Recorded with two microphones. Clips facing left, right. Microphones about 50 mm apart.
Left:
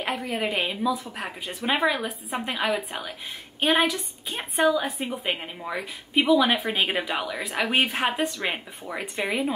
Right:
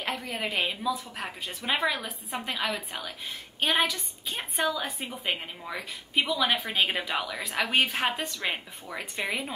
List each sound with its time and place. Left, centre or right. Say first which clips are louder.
0.0 s a woman's voice: left 4 dB; centre